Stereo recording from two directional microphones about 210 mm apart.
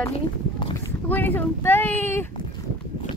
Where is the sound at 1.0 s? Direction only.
10° left (ahead or behind).